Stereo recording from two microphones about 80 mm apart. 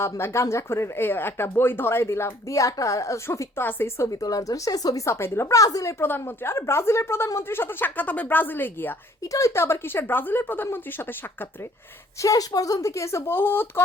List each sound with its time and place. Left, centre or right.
0.0 s speech: left
2.5 s a woman's voice: left
3.2 s speech: left
4.1 s a woman's voice: left
6.0 s speech: left
9.2 s speech: left
12.2 s a woman's voice: left